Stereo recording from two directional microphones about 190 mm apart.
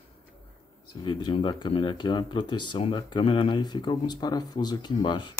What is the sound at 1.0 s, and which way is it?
Speech, 25° left (ahead or behind).